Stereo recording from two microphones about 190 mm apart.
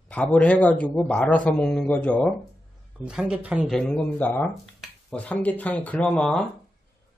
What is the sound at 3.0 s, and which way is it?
Speech, 5° right (ahead or behind).